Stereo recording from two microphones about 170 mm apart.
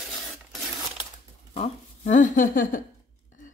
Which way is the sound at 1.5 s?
40° left (ahead or behind).